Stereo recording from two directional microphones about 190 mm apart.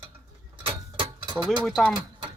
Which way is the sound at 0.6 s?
30° right (ahead or behind).